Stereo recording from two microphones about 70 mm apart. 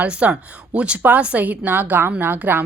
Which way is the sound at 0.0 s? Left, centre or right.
Centre.